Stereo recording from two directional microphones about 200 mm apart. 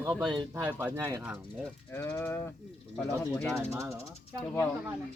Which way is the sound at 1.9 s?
10° left (ahead or behind).